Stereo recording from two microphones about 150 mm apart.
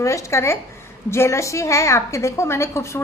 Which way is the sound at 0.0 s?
20° left (ahead or behind).